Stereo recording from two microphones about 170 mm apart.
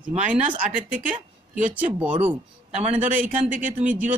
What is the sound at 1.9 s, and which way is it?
Speech, 10° right (ahead or behind).